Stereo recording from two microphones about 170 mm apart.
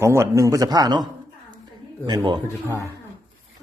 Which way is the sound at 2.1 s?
25° right (ahead or behind).